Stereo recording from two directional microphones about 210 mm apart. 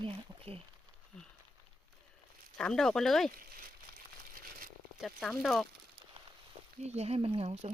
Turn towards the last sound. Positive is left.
turn(degrees=-30)  # may be behind; listen again after turning